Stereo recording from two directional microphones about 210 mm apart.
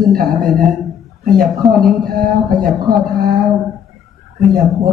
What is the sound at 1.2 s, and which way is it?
Speech, 40° right (ahead or behind).